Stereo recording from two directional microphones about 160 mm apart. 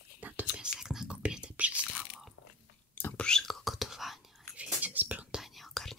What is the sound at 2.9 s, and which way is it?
Whispering, 10° left (ahead or behind).